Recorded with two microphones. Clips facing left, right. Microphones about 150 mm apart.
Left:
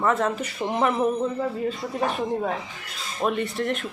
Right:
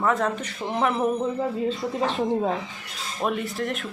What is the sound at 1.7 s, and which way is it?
Speech, 20° right (ahead or behind).